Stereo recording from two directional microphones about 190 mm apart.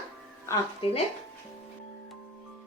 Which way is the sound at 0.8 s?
30° left (ahead or behind).